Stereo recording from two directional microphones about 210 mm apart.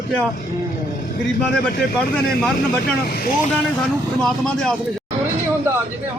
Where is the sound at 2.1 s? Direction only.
5° left (ahead or behind).